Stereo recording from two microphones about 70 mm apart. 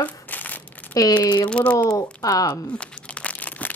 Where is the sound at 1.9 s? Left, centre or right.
Left.